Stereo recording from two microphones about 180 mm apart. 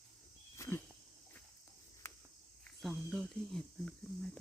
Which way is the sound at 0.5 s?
15° left (ahead or behind).